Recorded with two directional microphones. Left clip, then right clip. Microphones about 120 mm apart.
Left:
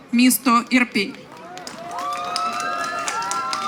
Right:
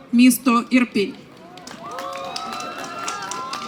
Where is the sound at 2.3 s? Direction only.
15° left (ahead or behind).